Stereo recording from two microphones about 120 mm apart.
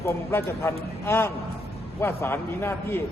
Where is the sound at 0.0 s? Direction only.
20° left (ahead or behind).